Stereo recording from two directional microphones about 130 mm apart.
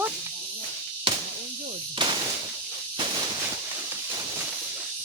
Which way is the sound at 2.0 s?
35° right (ahead or behind).